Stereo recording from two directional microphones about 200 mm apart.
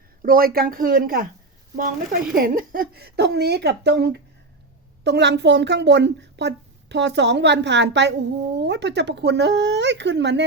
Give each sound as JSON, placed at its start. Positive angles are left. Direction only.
{"t": 0.2, "sound": "a woman's voice", "side_deg": -45}